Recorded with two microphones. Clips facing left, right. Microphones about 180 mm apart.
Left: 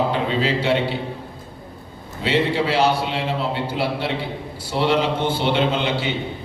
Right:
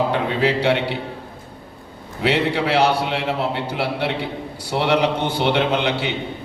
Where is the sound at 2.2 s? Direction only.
65° right (ahead or behind).